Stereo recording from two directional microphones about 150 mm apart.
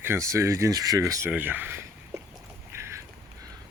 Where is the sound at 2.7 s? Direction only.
20° right (ahead or behind).